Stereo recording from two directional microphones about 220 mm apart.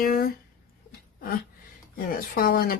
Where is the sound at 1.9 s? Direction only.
45° left (ahead or behind).